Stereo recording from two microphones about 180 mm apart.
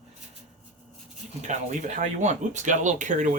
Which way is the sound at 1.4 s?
40° right (ahead or behind).